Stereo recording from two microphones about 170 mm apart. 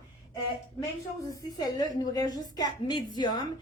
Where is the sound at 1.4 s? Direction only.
20° left (ahead or behind).